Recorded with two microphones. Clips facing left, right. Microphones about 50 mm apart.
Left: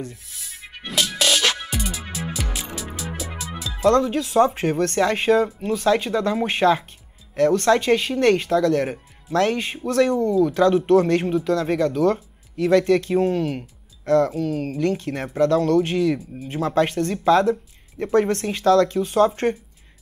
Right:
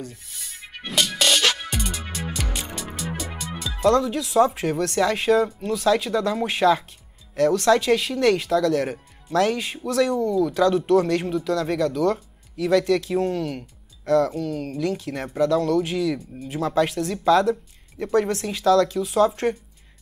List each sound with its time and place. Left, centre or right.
0.1 s music: centre
3.9 s speech: left
18.3 s speech: left